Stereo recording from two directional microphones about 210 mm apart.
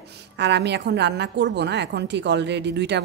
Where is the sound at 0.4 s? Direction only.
55° right (ahead or behind).